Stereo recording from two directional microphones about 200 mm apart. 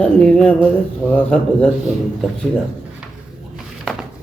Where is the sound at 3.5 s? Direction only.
Centre (ahead or behind).